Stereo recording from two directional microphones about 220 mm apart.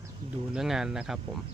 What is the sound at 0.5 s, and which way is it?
Speech, centre (ahead or behind).